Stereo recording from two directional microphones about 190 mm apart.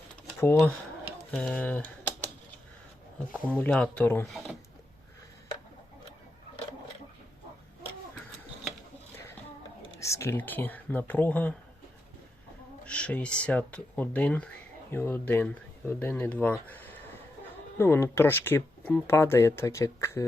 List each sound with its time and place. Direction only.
0.3 s speech: 10° left (ahead or behind)
3.3 s speech: 5° left (ahead or behind)
10.0 s speech: 15° left (ahead or behind)
12.8 s speech: 5° left (ahead or behind)